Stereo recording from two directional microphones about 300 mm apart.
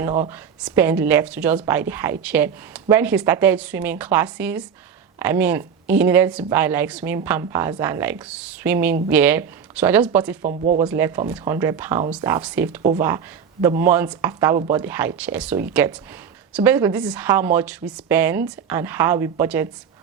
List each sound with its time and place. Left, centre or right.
0.2 s a woman's voice: centre
10.4 s speech: right
10.8 s a woman's voice: centre